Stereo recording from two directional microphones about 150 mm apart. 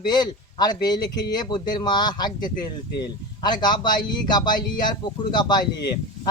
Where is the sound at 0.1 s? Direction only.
30° left (ahead or behind).